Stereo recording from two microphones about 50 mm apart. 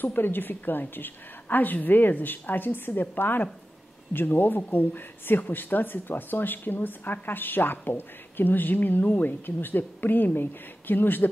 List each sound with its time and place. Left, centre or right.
0.0 s speech: left